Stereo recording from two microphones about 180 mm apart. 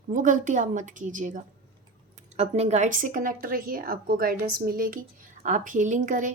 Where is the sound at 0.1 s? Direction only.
45° right (ahead or behind).